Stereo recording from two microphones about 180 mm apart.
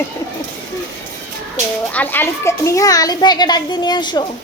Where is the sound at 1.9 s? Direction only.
10° left (ahead or behind).